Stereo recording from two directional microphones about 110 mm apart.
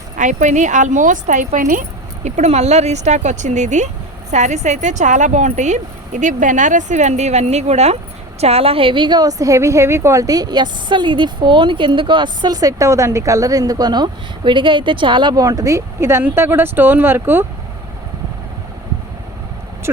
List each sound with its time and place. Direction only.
0.3 s speech: 90° right
8.4 s a woman's voice: 70° right (ahead or behind); by 17.4 s 20° right (ahead or behind)